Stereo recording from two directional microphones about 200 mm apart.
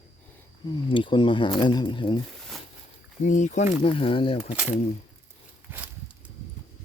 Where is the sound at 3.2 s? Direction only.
40° left (ahead or behind).